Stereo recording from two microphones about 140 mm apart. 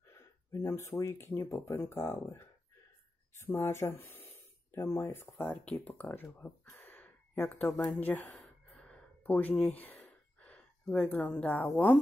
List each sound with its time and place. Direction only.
0.1 s speech: 20° left (ahead or behind)
8.6 s gasp: 10° left (ahead or behind)